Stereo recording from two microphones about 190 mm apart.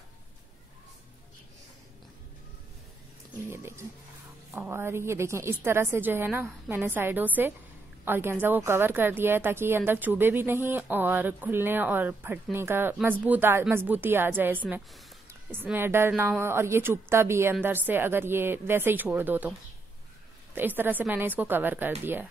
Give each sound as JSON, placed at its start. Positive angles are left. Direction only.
{"t": 3.4, "sound": "a sound", "side_deg": -15}
{"t": 4.6, "sound": "a woman's voice", "side_deg": -10}
{"t": 20.5, "sound": "a woman's voice", "side_deg": -10}